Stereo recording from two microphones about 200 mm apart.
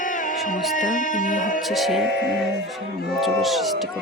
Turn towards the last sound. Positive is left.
turn(degrees=0)  # may be behind; listen again after turning